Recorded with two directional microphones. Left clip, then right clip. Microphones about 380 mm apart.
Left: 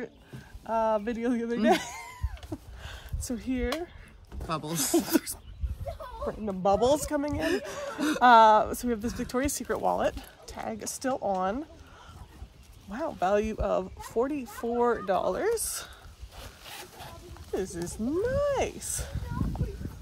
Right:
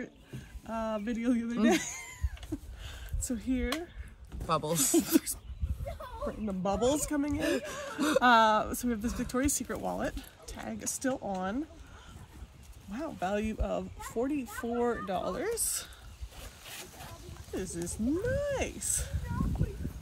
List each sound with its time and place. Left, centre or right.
0.7 s speech: centre
4.5 s speech: centre
5.0 s speech: centre
6.4 s speech: centre
7.3 s speech: centre
7.6 s speech: centre
12.9 s speech: centre
16.3 s a sound: centre
17.6 s speech: centre